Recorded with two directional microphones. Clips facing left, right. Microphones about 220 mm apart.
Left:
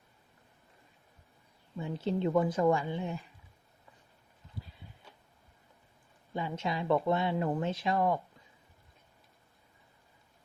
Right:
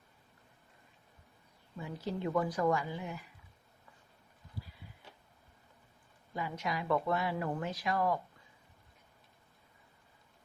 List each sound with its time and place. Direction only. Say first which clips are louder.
1.8 s speech: left 6 dB; 25° left (ahead or behind)
6.3 s speech: left 3 dB; 25° left (ahead or behind)